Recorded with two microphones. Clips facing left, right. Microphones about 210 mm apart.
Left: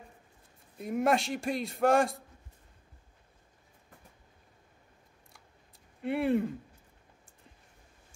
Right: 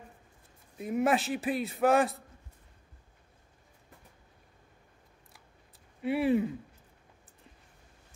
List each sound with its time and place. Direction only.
0.7 s a man's voice: centre (ahead or behind)
6.0 s a man's voice: centre (ahead or behind)